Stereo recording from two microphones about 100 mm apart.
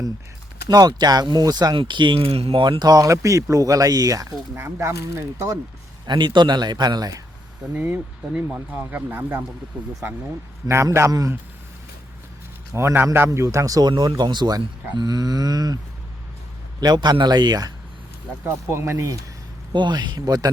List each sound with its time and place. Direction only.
0.7 s speech: 40° right (ahead or behind)
1.7 s speech: 55° right (ahead or behind); by 2.6 s 75° right (ahead or behind)
2.6 s speech: 45° right (ahead or behind)
4.5 s speech: 25° right (ahead or behind)
6.1 s speech: 50° right (ahead or behind)
7.7 s speech: 15° right (ahead or behind)
8.5 s speech: 20° right (ahead or behind)
11.1 s speech: 35° right (ahead or behind)
12.7 s speech: 20° right (ahead or behind); by 15.8 s 40° right (ahead or behind)
16.8 s speech: 45° right (ahead or behind)
18.4 s speech: 25° right (ahead or behind)
19.7 s speech: 50° right (ahead or behind)